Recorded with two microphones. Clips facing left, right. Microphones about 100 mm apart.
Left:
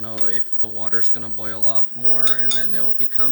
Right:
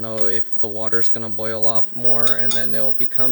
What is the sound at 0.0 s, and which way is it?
Speech, 85° right.